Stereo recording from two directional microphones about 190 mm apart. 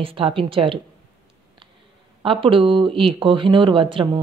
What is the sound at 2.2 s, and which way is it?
Speech, 25° right (ahead or behind).